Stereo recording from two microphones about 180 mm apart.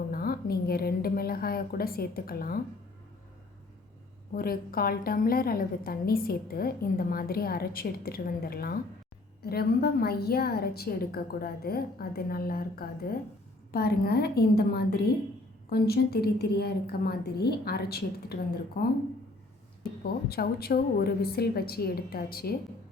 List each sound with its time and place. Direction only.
0.1 s a woman's voice: 55° left (ahead or behind)
4.4 s a woman's voice: 55° left (ahead or behind)
20.2 s a woman's voice: 60° left (ahead or behind)